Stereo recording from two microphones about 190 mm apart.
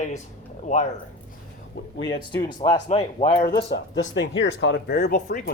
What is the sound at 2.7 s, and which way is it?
Speech, 35° left (ahead or behind).